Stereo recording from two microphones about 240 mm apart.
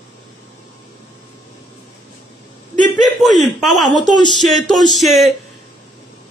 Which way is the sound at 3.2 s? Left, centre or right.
Centre.